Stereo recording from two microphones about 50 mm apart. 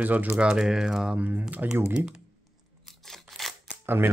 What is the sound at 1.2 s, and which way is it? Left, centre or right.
Speech, right.